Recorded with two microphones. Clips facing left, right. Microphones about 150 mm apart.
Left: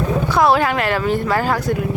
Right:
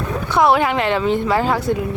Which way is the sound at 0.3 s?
20° right (ahead or behind).